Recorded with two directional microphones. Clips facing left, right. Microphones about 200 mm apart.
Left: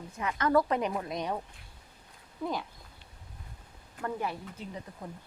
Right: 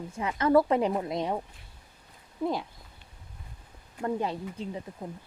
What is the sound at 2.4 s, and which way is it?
Speech, 25° right (ahead or behind).